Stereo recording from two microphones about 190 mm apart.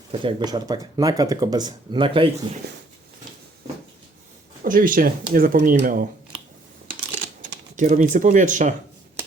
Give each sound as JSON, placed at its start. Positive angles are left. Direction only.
{"t": 0.1, "sound": "speech", "side_deg": -25}
{"t": 4.6, "sound": "speech", "side_deg": -45}
{"t": 7.8, "sound": "speech", "side_deg": -40}